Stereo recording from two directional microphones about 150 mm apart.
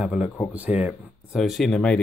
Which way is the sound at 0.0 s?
5° right (ahead or behind).